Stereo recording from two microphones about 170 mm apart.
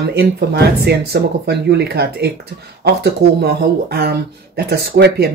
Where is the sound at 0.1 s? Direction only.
70° right (ahead or behind).